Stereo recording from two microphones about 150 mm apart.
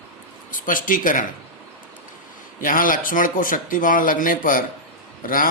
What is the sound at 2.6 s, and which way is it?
Speech, 65° left (ahead or behind).